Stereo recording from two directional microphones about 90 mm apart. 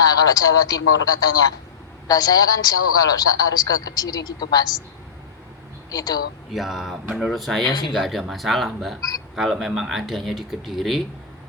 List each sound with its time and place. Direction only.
0.0 s a man's voice: 45° left (ahead or behind)
5.9 s a man's voice: 45° left (ahead or behind)
6.5 s speech: centre (ahead or behind)
9.0 s a man's voice: 45° left (ahead or behind)
9.3 s speech: centre (ahead or behind)